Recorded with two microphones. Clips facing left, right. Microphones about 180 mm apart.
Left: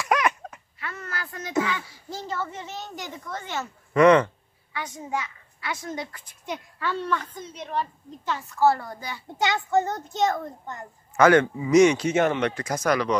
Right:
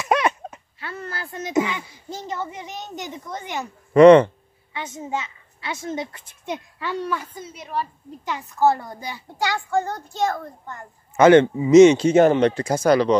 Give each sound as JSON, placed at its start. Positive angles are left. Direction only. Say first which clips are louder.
{"t": 0.0, "sound": "speech", "louder": "right 3 dB", "side_deg": -25}
{"t": 3.9, "sound": "a child's voice", "louder": "right 7 dB", "side_deg": -30}
{"t": 9.4, "sound": "a child's voice", "louder": "even", "side_deg": 20}
{"t": 11.1, "sound": "a child's voice", "louder": "right 5 dB", "side_deg": -25}